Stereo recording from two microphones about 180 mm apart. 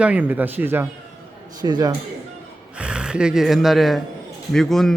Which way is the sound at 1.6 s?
20° right (ahead or behind).